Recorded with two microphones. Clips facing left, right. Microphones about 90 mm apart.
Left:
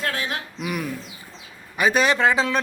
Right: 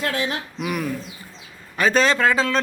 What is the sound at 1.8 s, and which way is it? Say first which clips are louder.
Speech: right 1 dB; 15° left (ahead or behind).